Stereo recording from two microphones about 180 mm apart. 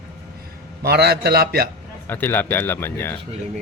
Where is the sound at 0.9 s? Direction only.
60° right (ahead or behind).